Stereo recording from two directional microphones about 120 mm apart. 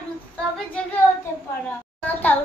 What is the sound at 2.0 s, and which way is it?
Speech, 15° left (ahead or behind).